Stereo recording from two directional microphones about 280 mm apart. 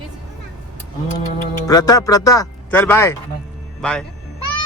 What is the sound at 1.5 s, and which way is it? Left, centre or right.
Speech, centre.